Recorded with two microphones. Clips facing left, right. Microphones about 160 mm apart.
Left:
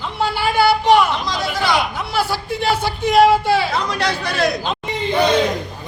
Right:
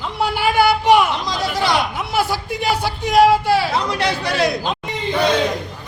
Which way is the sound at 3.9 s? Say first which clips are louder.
Right 1 dB; 25° right (ahead or behind).